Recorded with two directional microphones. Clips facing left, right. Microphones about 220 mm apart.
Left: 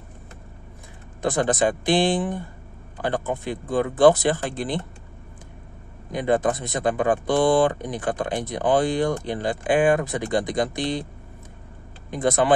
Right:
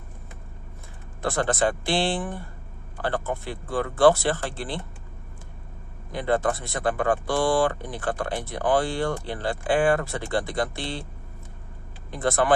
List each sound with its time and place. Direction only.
1.2 s speech: 15° left (ahead or behind)
6.1 s speech: 15° left (ahead or behind)
12.1 s speech: 20° left (ahead or behind)